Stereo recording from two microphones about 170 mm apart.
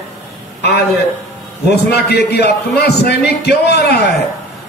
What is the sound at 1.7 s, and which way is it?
A man's voice, 70° left (ahead or behind).